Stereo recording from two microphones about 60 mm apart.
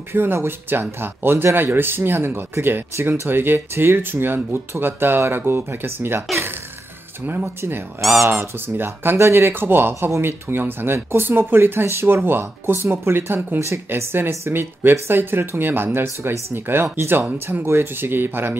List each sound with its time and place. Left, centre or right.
0.1 s speech: right
8.1 s speech: right
17.6 s speech: right